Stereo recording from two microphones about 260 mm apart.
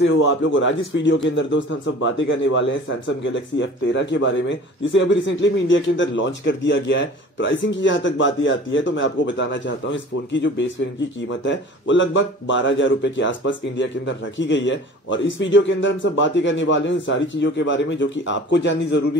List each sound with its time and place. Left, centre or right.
0.0 s a man's voice: left